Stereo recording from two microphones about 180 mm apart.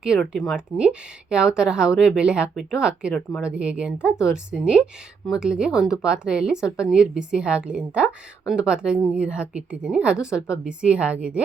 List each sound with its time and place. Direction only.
0.0 s a woman's voice: centre (ahead or behind)